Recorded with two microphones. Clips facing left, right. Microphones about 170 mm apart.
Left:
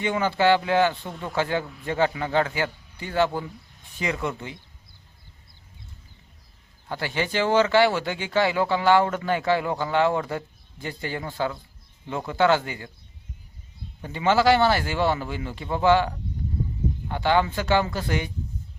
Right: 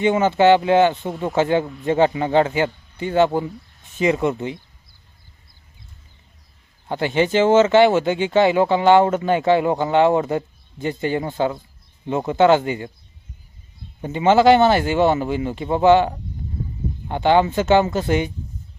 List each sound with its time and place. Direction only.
0.0 s speech: 20° right (ahead or behind)
6.8 s speech: 20° right (ahead or behind)
14.0 s speech: 20° right (ahead or behind)